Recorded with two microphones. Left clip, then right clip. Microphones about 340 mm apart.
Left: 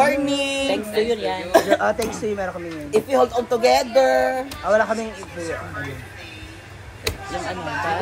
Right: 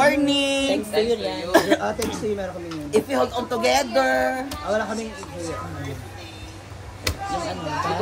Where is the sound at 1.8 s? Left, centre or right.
Left.